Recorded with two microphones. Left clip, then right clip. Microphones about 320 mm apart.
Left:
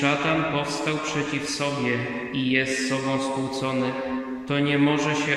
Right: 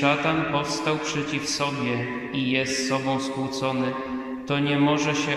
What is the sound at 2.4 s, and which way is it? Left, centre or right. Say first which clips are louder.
Speech: left 1 dB; centre.